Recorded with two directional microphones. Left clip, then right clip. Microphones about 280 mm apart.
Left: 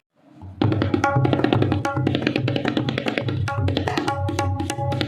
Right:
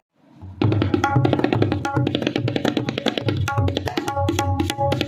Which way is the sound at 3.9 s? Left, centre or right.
Right.